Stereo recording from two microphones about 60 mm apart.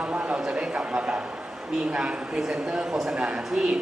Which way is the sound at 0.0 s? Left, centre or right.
Centre.